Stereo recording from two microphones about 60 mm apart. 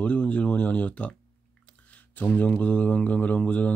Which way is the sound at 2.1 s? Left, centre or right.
Left.